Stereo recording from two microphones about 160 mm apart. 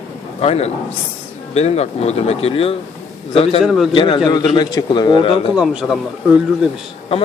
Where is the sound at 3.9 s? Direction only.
30° left (ahead or behind).